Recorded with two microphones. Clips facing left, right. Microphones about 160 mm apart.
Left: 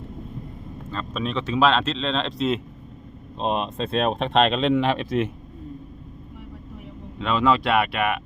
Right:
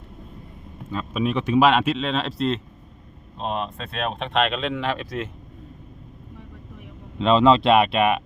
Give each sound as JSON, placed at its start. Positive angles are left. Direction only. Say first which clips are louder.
{"t": 0.9, "sound": "speech", "louder": "right 4 dB", "side_deg": -10}
{"t": 3.3, "sound": "speech", "louder": "left 3 dB", "side_deg": 20}
{"t": 7.2, "sound": "speech", "louder": "right 5 dB", "side_deg": -25}